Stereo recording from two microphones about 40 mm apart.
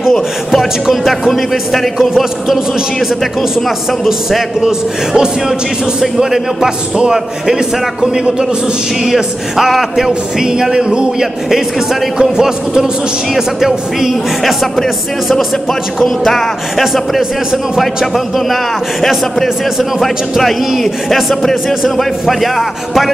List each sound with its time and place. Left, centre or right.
0.1 s music: centre
0.8 s a man's voice: centre
1.3 s a man's voice: centre
4.6 s a man's voice: centre
9.0 s a man's voice: centre
10.4 s a man's voice: centre
21.4 s a man's voice: centre